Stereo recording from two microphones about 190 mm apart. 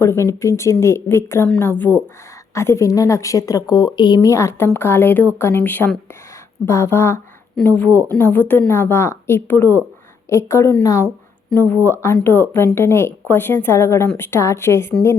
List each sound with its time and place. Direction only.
0.0 s a woman's voice: 15° left (ahead or behind)